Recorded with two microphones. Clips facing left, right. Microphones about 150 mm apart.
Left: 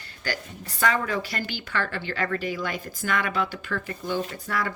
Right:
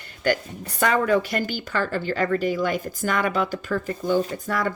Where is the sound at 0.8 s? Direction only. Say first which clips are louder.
Right 5 dB; 50° right (ahead or behind).